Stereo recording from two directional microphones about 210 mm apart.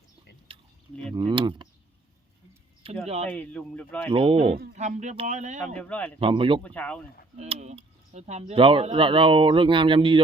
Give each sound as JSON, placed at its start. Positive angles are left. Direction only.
{"t": 0.5, "sound": "a sound", "side_deg": -25}
{"t": 1.1, "sound": "speech", "side_deg": -20}
{"t": 2.8, "sound": "speech", "side_deg": -25}
{"t": 3.2, "sound": "a man's voice", "side_deg": 10}
{"t": 4.1, "sound": "speech", "side_deg": -25}
{"t": 5.7, "sound": "a man's voice", "side_deg": 5}
{"t": 6.1, "sound": "speech", "side_deg": -25}
{"t": 6.6, "sound": "speech", "side_deg": 5}
{"t": 7.3, "sound": "speech", "side_deg": -30}